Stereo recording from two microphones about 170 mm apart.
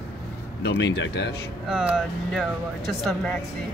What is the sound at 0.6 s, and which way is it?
Speech, 90° left.